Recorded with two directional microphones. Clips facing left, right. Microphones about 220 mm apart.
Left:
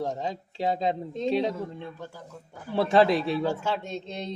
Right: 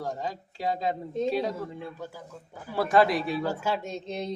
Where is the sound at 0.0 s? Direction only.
25° left (ahead or behind).